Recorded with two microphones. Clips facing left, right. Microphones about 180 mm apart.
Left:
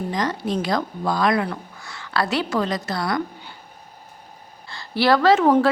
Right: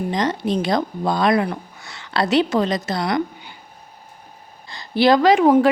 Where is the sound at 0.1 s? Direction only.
20° right (ahead or behind).